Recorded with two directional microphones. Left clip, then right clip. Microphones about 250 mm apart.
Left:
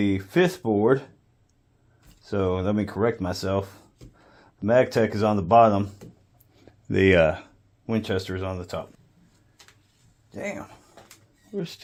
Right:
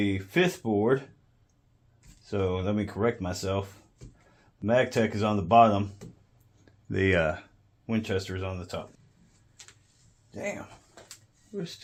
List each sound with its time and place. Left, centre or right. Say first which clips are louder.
0.0 s speech: left 4 dB; left
2.2 s speech: left 4 dB; left
10.3 s speech: left 2 dB; left